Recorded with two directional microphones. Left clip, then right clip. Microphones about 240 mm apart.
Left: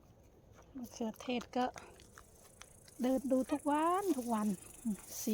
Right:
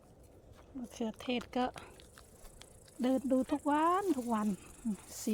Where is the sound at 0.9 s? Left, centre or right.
Centre.